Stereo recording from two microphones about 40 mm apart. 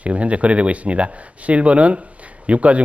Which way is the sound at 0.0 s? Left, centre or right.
Right.